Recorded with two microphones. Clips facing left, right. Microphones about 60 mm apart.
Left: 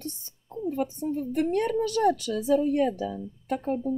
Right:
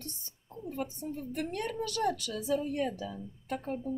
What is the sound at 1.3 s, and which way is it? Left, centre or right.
A woman's voice, left.